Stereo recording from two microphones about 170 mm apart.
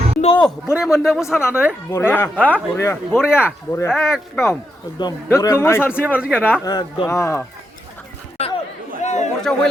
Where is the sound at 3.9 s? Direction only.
Centre (ahead or behind).